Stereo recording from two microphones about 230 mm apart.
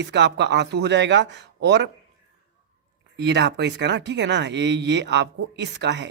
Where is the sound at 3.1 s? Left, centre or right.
Right.